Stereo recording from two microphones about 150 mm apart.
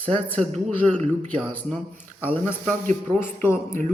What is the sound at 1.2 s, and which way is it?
Speech, 10° left (ahead or behind).